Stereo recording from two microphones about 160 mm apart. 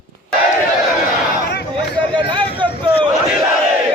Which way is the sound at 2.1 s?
30° right (ahead or behind).